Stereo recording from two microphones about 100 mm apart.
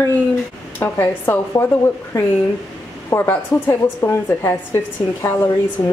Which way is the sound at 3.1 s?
25° left (ahead or behind).